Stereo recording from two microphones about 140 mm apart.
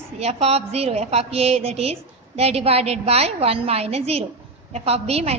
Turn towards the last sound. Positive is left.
turn(degrees=-45)  # may be behind; listen again after turning